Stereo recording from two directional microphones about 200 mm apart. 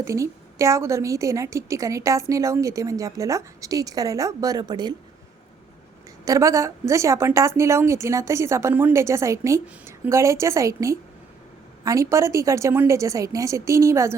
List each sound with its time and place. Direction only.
0.0 s a woman's voice: 15° right (ahead or behind)
6.2 s a woman's voice: 15° right (ahead or behind)